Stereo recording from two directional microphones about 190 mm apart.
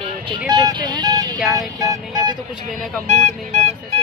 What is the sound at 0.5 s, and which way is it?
Speech, 25° right (ahead or behind).